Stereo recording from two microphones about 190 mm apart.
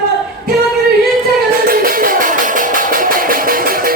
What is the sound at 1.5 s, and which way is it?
Music, 50° right (ahead or behind).